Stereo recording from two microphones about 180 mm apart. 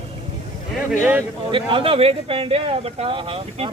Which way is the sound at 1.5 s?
30° right (ahead or behind).